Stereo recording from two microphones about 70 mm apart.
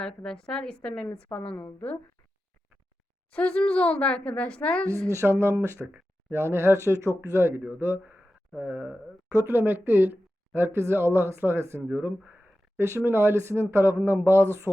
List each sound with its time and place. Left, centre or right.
0.0 s a woman's voice: centre
3.3 s a woman's voice: centre
4.9 s speech: right
12.3 s a sound: right
13.1 s speech: right